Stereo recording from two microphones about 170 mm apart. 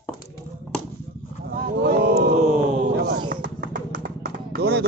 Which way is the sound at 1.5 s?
65° right (ahead or behind).